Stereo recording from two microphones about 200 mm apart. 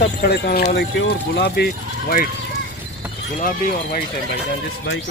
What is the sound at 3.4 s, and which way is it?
Speech, 45° left (ahead or behind).